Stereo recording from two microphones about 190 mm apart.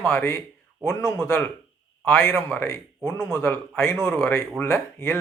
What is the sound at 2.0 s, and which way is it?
Speech, 15° left (ahead or behind).